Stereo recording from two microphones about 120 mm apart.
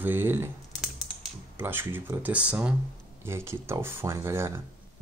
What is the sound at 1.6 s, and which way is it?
Speech, 15° right (ahead or behind).